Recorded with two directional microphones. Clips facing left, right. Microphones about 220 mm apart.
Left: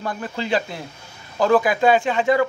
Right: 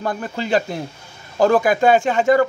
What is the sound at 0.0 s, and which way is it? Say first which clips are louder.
Speech: right 3 dB; 45° right (ahead or behind).